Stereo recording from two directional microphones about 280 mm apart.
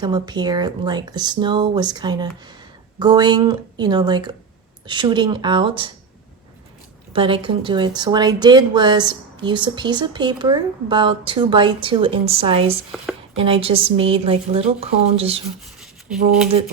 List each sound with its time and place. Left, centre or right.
0.0 s speech: centre
7.1 s a woman's voice: centre
15.6 s a sound: centre